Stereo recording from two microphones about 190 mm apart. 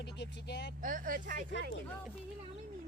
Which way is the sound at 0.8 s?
45° right (ahead or behind).